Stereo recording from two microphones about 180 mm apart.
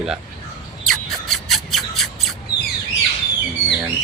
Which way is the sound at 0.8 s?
Centre (ahead or behind).